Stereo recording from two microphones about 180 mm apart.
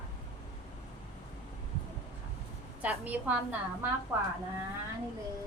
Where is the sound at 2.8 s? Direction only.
10° right (ahead or behind).